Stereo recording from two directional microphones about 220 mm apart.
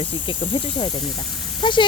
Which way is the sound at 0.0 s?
20° left (ahead or behind).